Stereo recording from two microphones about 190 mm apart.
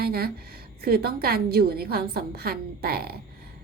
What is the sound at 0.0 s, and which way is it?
A woman's voice, 55° right (ahead or behind).